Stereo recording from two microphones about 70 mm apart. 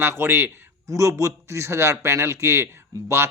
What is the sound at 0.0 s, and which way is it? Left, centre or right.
Speech, right.